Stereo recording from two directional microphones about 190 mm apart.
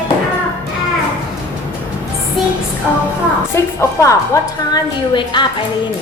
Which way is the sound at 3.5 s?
15° left (ahead or behind).